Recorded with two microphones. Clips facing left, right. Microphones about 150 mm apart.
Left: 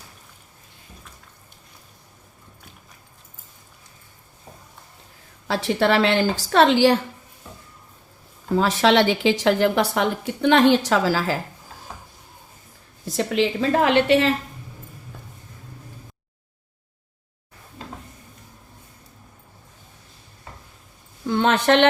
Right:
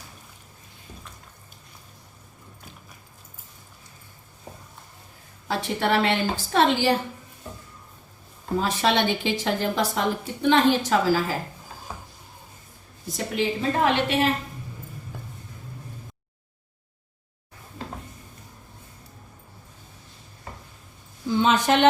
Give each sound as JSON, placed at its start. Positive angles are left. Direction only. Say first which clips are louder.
{"t": 5.5, "sound": "a woman's voice", "louder": "left 4 dB", "side_deg": 90}
{"t": 8.5, "sound": "a woman's voice", "louder": "left 5 dB", "side_deg": 90}
{"t": 13.1, "sound": "a woman's voice", "louder": "left 5 dB", "side_deg": 90}
{"t": 21.2, "sound": "a sound", "louder": "left 2 dB", "side_deg": 65}